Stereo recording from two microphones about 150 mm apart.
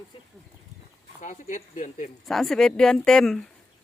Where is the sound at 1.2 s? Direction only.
60° left (ahead or behind).